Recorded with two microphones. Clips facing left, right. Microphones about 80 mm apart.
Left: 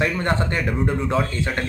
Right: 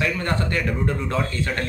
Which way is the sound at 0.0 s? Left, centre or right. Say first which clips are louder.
Left 2 dB; left.